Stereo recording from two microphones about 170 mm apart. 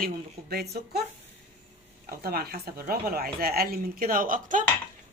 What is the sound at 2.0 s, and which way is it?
Speech, 65° right (ahead or behind).